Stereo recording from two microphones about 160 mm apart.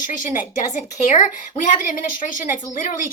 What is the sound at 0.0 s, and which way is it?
A woman's voice, 55° left (ahead or behind).